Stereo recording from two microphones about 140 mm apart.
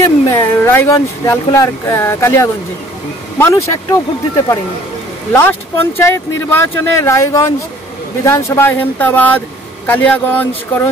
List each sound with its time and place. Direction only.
0.0 s speech: 20° left (ahead or behind)
5.3 s speech: 15° left (ahead or behind)